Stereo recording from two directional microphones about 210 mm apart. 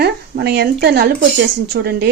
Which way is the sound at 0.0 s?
50° right (ahead or behind).